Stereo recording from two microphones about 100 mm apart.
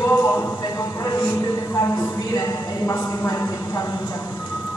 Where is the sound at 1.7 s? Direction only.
30° left (ahead or behind).